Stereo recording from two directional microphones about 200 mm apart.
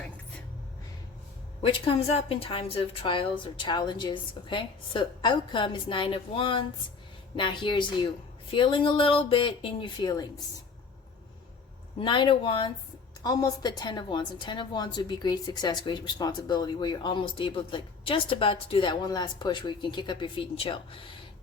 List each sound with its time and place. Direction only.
1.6 s a woman's voice: 25° left (ahead or behind)
11.9 s a woman's voice: 25° left (ahead or behind)